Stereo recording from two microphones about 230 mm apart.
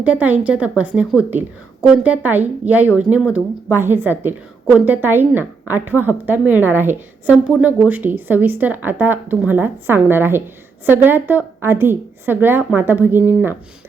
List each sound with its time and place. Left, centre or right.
0.0 s a woman's voice: centre